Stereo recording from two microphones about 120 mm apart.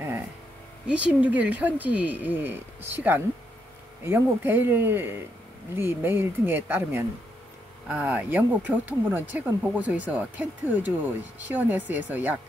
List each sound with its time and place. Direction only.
0.8 s speech: 10° right (ahead or behind)